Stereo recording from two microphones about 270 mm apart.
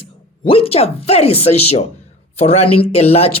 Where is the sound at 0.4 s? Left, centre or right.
Left.